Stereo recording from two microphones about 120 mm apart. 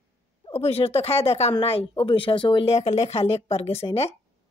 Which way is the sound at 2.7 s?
65° left (ahead or behind).